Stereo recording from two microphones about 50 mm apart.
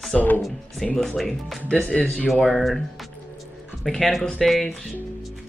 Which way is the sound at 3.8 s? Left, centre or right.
Centre.